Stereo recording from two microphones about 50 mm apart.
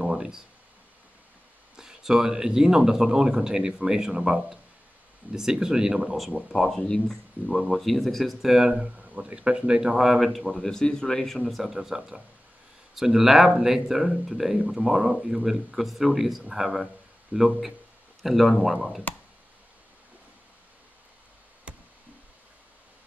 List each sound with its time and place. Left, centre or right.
0.0 s a sound: centre
1.8 s speech: centre
6.5 s speech: centre
6.8 s speech: centre
7.6 s speech: centre
8.7 s speech: right; by 10.4 s centre
10.4 s speech: centre
21.7 s a sound: right